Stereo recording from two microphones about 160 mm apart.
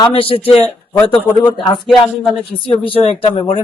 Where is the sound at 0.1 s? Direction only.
35° left (ahead or behind).